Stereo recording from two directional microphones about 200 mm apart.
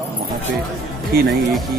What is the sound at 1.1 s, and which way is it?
Speech, 50° right (ahead or behind).